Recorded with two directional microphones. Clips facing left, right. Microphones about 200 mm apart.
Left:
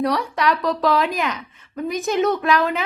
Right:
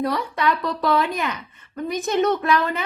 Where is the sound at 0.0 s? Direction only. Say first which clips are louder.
Left 2 dB; centre (ahead or behind).